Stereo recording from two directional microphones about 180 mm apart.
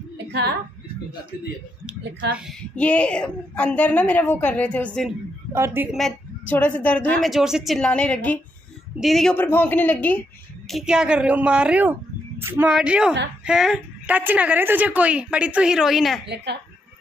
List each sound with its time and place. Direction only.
0.3 s a woman's voice: 65° right (ahead or behind)
2.7 s a woman's voice: 5° left (ahead or behind)
5.5 s a woman's voice: 15° right (ahead or behind)
5.9 s a woman's voice: centre (ahead or behind)
10.7 s a woman's voice: 5° right (ahead or behind)